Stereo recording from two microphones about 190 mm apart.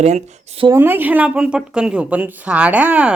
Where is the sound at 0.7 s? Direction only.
10° right (ahead or behind).